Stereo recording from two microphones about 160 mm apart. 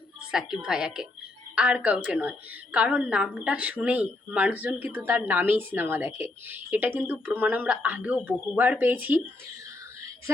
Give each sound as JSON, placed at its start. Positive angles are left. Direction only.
{"t": 0.2, "sound": "a woman's voice", "side_deg": -5}